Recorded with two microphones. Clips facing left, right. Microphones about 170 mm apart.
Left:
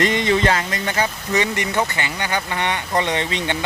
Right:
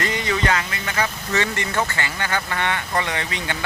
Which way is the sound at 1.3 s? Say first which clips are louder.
Left 3 dB; 15° left (ahead or behind).